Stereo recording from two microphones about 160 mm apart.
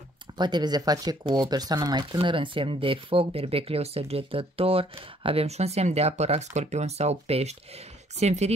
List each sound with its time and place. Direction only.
0.4 s speech: 25° right (ahead or behind); by 8.5 s 45° right (ahead or behind)